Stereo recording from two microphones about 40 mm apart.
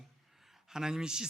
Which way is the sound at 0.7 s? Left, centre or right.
Centre.